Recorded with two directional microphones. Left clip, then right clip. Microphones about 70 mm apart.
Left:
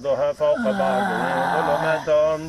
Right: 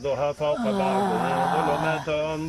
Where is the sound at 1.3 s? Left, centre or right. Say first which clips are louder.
Left 3 dB; centre.